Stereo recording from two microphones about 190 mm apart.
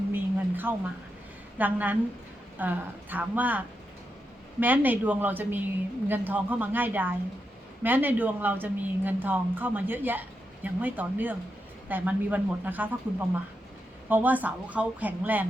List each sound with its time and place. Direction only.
0.1 s a sound: 10° right (ahead or behind)
1.5 s a woman's voice: 10° right (ahead or behind)
4.6 s a woman's voice: 10° right (ahead or behind)